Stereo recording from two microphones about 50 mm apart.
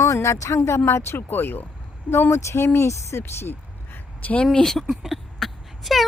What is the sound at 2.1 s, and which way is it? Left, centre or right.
Speech, left.